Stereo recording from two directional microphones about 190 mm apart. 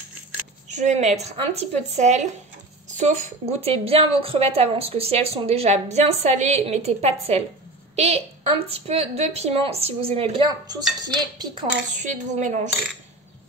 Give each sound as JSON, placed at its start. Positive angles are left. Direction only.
{"t": 0.7, "sound": "a woman's voice", "side_deg": -40}
{"t": 11.9, "sound": "a woman's voice", "side_deg": -40}